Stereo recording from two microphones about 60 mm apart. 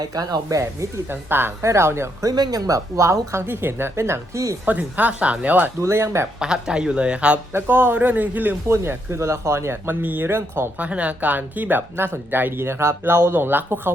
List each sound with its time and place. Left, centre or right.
0.0 s speech: right
1.1 s a man's voice: right
1.6 s speech: right
2.2 s speech: right
3.4 s speech: right
4.9 s speech: right
5.8 s speech: right
6.4 s speech: centre
7.5 s a man's voice: right
8.7 s speech: right
10.8 s speech: right
11.9 s a man's voice: right